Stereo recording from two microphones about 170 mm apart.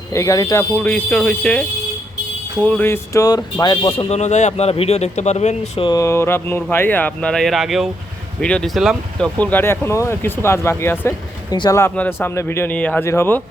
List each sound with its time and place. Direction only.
0.1 s speech: 20° left (ahead or behind)
0.8 s speech: 10° left (ahead or behind)
2.6 s speech: 10° left (ahead or behind); by 5.9 s 40° left (ahead or behind)
5.9 s speech: 15° left (ahead or behind)